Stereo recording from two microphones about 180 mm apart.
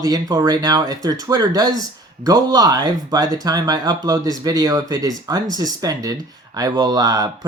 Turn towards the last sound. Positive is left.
turn(degrees=-20)  # may be behind; listen again after turning